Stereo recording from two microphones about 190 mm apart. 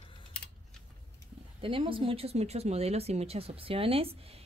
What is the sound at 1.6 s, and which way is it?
A woman's voice, 30° right (ahead or behind).